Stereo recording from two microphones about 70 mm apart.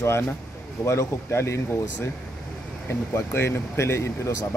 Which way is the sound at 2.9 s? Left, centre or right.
Left.